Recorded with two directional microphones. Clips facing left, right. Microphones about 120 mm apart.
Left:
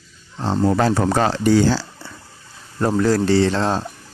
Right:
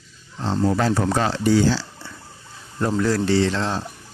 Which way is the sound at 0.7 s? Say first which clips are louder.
Left 3 dB; 50° left (ahead or behind).